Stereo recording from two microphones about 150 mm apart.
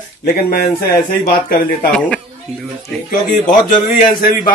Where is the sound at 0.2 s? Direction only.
90° left.